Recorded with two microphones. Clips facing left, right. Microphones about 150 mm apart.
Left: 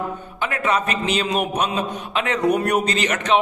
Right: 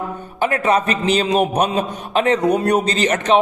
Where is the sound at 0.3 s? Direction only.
40° right (ahead or behind).